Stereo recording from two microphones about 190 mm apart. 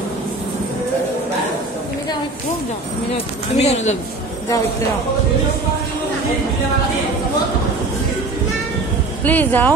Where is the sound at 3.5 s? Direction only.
35° left (ahead or behind).